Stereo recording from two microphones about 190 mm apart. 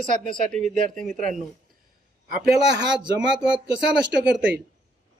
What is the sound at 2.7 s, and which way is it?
A man's voice, 65° right (ahead or behind).